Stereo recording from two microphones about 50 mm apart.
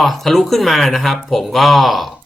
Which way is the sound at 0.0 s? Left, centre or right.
Centre.